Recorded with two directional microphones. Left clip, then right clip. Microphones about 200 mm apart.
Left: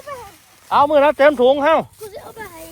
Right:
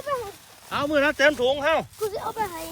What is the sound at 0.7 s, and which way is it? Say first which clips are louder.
Speech: left 10 dB; 20° left (ahead or behind).